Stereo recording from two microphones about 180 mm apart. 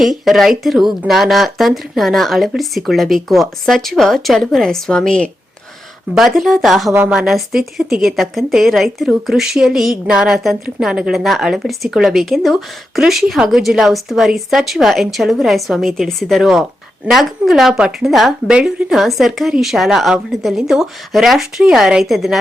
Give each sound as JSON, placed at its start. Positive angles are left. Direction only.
{"t": 0.0, "sound": "a woman's voice", "side_deg": 0}